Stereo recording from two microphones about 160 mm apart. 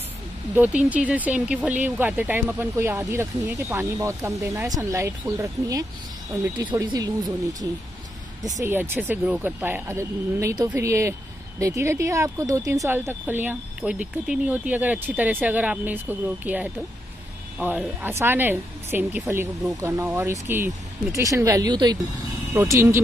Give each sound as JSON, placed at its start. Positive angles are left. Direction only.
{"t": 0.6, "sound": "speech", "side_deg": -10}